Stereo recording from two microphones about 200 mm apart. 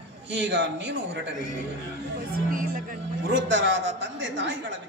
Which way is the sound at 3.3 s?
65° right (ahead or behind).